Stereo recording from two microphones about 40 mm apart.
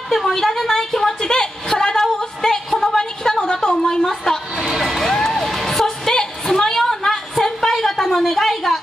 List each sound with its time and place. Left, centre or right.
0.1 s a woman's voice: centre
2.7 s a sound: centre
4.7 s vehicle: centre
5.1 s music: centre
5.9 s music: centre
6.4 s a sound: centre